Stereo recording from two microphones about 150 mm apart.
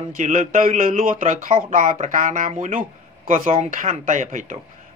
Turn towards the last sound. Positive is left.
turn(degrees=-55)  # may be behind; listen again after turning